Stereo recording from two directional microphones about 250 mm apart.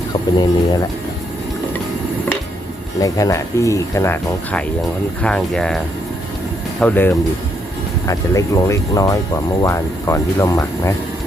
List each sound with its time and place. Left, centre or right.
0.1 s speech: centre
3.0 s speech: centre